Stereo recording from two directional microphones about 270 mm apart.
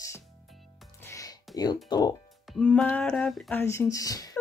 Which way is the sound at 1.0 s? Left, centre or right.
Centre.